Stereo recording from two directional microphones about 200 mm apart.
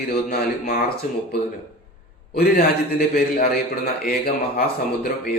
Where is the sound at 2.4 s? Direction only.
50° left (ahead or behind).